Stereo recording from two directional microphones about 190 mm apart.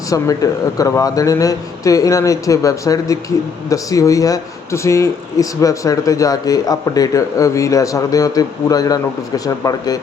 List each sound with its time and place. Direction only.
0.4 s speech: 15° left (ahead or behind)